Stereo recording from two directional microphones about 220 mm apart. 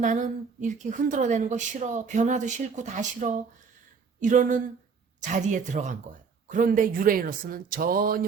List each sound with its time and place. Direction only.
0.0 s a woman's voice: 35° right (ahead or behind)